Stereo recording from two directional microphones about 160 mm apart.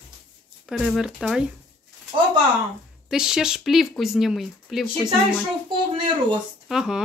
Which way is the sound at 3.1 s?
5° right (ahead or behind).